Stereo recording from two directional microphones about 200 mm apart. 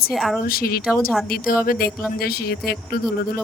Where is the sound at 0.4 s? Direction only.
50° left (ahead or behind).